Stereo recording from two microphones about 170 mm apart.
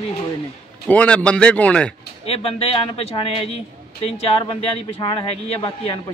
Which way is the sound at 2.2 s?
35° left (ahead or behind).